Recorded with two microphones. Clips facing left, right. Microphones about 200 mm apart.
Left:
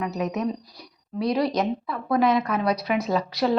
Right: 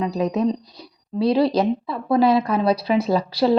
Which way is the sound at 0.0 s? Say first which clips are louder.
Right 5 dB; 30° right (ahead or behind).